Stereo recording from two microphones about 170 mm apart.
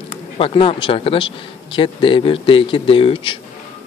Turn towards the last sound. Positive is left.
turn(degrees=30)  # may be behind; listen again after turning